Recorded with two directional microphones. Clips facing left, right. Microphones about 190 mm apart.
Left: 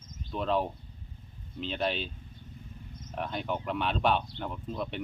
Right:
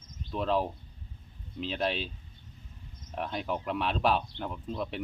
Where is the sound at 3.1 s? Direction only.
Centre (ahead or behind).